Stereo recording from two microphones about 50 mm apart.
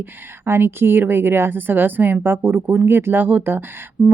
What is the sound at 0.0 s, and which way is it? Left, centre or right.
A woman's voice, right.